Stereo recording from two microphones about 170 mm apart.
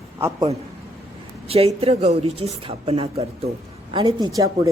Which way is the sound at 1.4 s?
35° right (ahead or behind).